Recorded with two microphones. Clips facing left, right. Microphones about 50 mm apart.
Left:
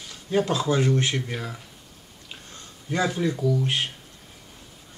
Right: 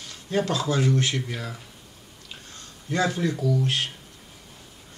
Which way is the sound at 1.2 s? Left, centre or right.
Centre.